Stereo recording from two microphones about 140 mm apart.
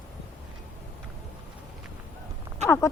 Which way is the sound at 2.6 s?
20° left (ahead or behind).